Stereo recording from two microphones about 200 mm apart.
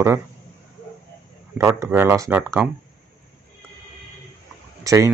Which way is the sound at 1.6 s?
15° right (ahead or behind).